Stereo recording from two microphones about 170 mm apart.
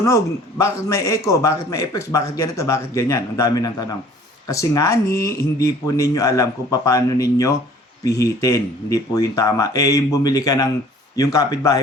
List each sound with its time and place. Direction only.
0.6 s a man's voice: 15° left (ahead or behind)